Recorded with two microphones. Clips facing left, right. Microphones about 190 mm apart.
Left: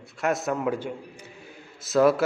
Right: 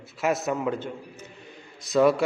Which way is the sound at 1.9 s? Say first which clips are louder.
Even; centre (ahead or behind).